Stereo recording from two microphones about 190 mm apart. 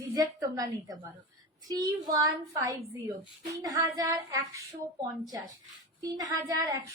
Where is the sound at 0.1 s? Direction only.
20° right (ahead or behind).